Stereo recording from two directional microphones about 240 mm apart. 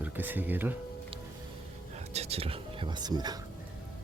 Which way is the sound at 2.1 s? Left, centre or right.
Right.